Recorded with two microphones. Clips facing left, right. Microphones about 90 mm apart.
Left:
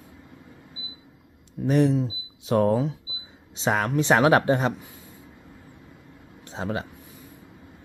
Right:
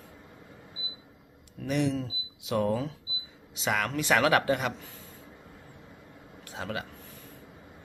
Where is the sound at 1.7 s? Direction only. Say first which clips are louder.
Left 7 dB; 40° left (ahead or behind).